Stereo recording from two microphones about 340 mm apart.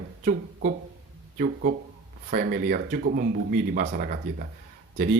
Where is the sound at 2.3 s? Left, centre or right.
Right.